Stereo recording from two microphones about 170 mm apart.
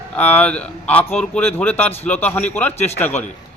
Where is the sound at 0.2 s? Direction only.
10° left (ahead or behind).